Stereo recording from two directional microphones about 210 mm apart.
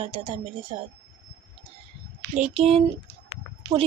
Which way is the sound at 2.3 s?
30° right (ahead or behind).